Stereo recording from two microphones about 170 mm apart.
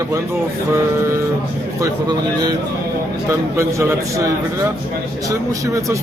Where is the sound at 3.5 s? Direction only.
15° right (ahead or behind).